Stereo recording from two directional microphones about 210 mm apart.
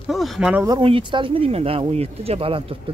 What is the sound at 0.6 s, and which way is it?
Speech, 20° right (ahead or behind).